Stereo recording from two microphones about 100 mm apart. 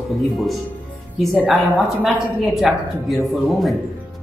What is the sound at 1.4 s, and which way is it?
Speech, centre (ahead or behind).